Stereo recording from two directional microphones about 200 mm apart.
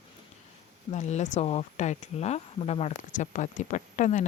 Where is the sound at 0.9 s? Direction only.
35° left (ahead or behind).